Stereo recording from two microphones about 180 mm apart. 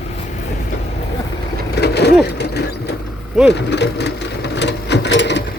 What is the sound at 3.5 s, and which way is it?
Sewing machine, 70° left (ahead or behind).